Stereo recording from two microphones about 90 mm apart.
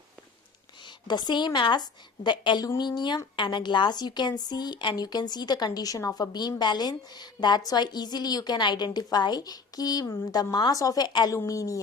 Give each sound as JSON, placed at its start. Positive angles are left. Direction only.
{"t": 0.9, "sound": "a woman's voice", "side_deg": 50}
{"t": 11.3, "sound": "a woman's voice", "side_deg": 40}